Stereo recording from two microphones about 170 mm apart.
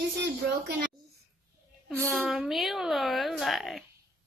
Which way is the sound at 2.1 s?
Centre (ahead or behind).